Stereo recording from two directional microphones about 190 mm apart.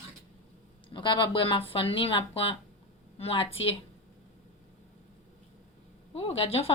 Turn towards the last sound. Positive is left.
turn(degrees=30)  # may be behind; listen again after turning